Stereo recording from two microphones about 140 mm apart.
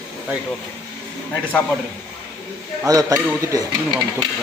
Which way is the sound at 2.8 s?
25° right (ahead or behind).